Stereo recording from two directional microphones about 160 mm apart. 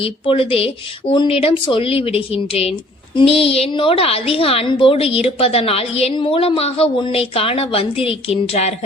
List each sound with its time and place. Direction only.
0.0 s a woman's voice: 35° left (ahead or behind)